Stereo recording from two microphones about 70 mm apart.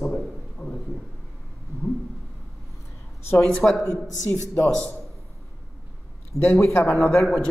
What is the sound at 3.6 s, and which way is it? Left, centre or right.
Speech, left.